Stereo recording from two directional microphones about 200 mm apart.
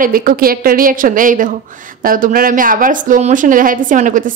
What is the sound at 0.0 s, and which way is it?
A woman's voice, 45° right (ahead or behind).